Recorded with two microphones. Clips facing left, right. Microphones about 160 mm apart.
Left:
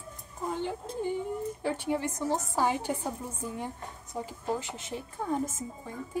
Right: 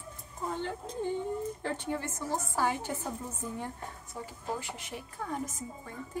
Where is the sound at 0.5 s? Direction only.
15° left (ahead or behind).